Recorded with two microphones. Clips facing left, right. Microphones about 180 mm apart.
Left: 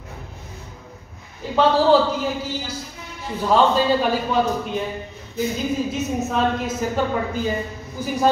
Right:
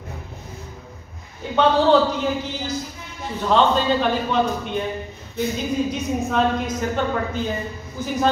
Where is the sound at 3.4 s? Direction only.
5° left (ahead or behind).